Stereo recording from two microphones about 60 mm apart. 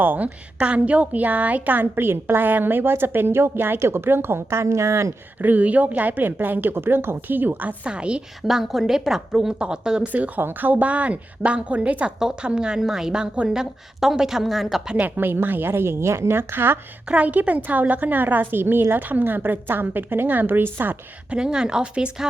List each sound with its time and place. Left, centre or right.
0.0 s a woman's voice: right
5.4 s a woman's voice: right
8.4 s a woman's voice: centre
10.1 s a woman's voice: right; by 14.8 s centre
14.8 s a woman's voice: right
17.1 s a woman's voice: right
21.2 s a woman's voice: centre